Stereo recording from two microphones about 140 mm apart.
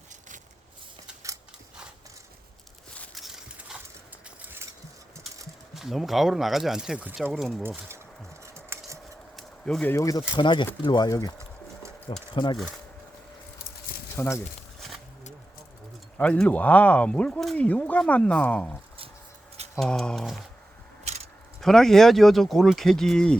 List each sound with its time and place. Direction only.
3.2 s horse: centre (ahead or behind)
5.7 s speech: centre (ahead or behind)
7.3 s speech: centre (ahead or behind)
8.5 s cutlery: 20° right (ahead or behind)
9.3 s a sound: 5° left (ahead or behind)
9.9 s speech: 25° left (ahead or behind)
10.3 s speech: 35° left (ahead or behind)
14.2 s speech: 20° left (ahead or behind)
14.8 s a sound: centre (ahead or behind)
16.1 s speech: 10° left (ahead or behind)
19.8 s speech: 5° left (ahead or behind)
21.0 s a sound: 50° right (ahead or behind)
21.6 s speech: centre (ahead or behind)